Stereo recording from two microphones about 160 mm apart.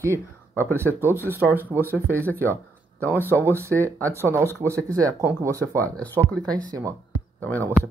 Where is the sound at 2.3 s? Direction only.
10° left (ahead or behind).